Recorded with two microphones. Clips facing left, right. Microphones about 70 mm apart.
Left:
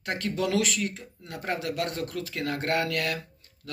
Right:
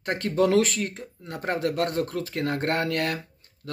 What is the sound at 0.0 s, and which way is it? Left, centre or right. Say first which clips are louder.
Speech: right 6 dB; right.